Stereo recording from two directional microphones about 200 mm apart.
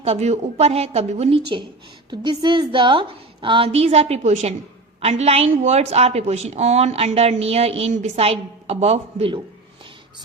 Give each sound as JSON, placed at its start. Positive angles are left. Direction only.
{"t": 0.0, "sound": "a woman's voice", "side_deg": -30}
{"t": 2.0, "sound": "a woman's voice", "side_deg": -20}